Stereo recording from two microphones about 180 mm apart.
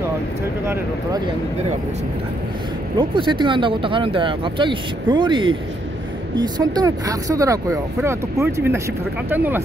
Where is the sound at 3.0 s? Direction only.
25° right (ahead or behind); by 9.6 s 10° right (ahead or behind).